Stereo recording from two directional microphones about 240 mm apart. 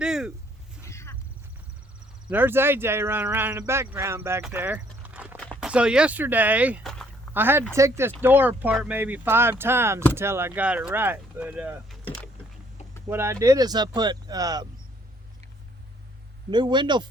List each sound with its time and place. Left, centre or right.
0.0 s a sound: centre
0.9 s a sound: centre
2.3 s speech: centre
12.0 s rowboat: centre
13.1 s speech: centre
16.5 s speech: centre